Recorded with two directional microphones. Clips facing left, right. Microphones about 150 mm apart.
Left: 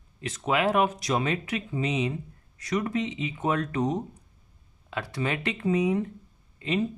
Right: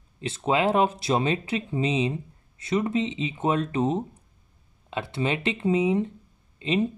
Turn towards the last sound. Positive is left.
turn(degrees=-25)  # may be behind; listen again after turning